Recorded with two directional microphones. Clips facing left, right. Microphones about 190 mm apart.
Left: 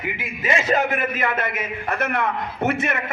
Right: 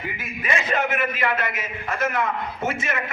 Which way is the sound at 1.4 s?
60° left (ahead or behind).